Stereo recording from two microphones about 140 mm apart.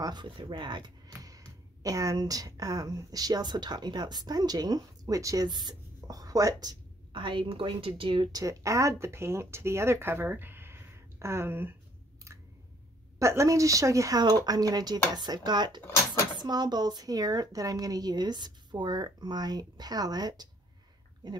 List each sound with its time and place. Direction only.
0.0 s a woman's voice: 35° right (ahead or behind)
8.4 s speech: 25° right (ahead or behind)
12.3 s a sound: 20° right (ahead or behind)
13.2 s speech: 20° right (ahead or behind)